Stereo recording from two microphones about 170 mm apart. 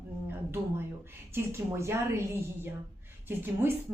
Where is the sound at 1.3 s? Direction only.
15° right (ahead or behind).